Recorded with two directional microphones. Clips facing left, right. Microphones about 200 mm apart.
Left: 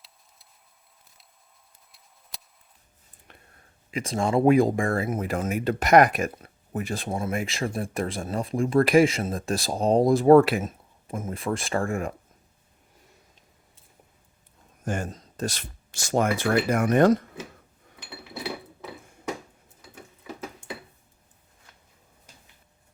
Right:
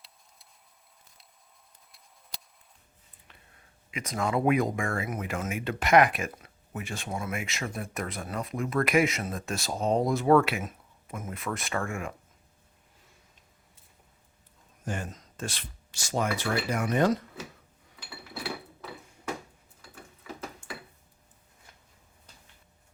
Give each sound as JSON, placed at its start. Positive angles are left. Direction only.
{"t": 3.9, "sound": "speech", "side_deg": 30}
{"t": 14.8, "sound": "speech", "side_deg": 45}
{"t": 15.1, "sound": "speech", "side_deg": 35}